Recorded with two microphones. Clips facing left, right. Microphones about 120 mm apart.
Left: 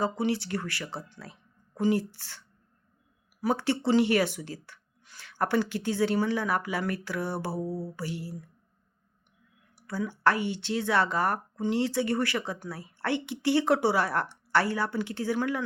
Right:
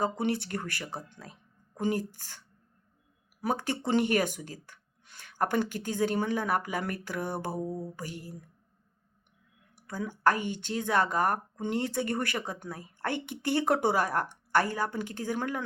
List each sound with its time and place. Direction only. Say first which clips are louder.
0.0 s speech: left 1 dB; 55° right (ahead or behind)
0.9 s speech: left 1 dB; 15° right (ahead or behind)
1.8 s speech: left 4 dB; 45° right (ahead or behind)
3.5 s speech: left 3 dB; 45° right (ahead or behind)
7.6 s mantra: left 2 dB; 5° left (ahead or behind)
7.9 s speech: left 5 dB; 45° right (ahead or behind)
10.2 s speech: left 1 dB; 45° right (ahead or behind)